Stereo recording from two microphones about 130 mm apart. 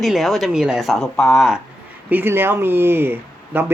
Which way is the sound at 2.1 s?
15° right (ahead or behind).